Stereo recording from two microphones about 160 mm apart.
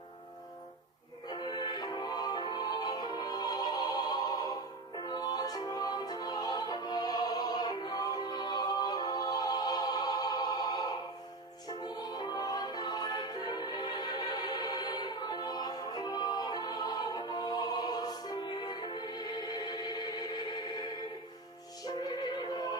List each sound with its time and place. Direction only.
1.3 s music: 30° left (ahead or behind)
21.8 s music: 25° left (ahead or behind)